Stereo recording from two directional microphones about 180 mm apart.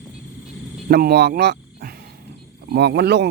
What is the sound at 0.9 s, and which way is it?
Speech, 60° right (ahead or behind).